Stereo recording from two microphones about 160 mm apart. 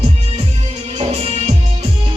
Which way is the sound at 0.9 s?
40° right (ahead or behind).